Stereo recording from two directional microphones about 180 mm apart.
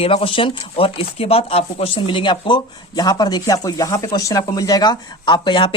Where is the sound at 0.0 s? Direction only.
30° left (ahead or behind).